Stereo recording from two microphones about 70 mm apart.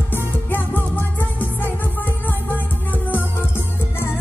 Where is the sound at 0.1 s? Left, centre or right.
Left.